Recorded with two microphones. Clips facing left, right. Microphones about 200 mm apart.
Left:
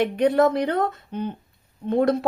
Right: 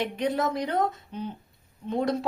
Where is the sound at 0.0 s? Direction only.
60° left (ahead or behind).